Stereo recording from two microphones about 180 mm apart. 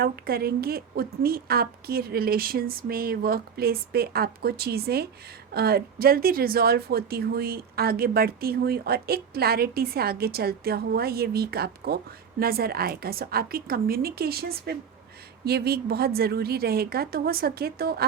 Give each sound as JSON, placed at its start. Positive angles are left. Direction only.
{"t": 0.0, "sound": "speech", "side_deg": -60}